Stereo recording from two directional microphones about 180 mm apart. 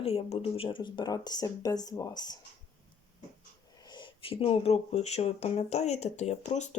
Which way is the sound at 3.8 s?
25° left (ahead or behind).